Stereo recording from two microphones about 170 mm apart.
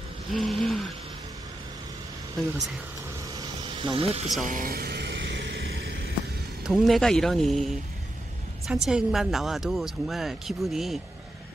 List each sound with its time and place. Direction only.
0.3 s a sound: centre (ahead or behind)
3.3 s vehicle: 30° right (ahead or behind)
4.5 s vehicle: 55° right (ahead or behind); by 6.1 s 90° right
6.6 s speech: centre (ahead or behind)